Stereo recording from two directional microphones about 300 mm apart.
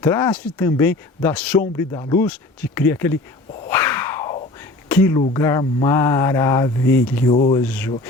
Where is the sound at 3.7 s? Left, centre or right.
Centre.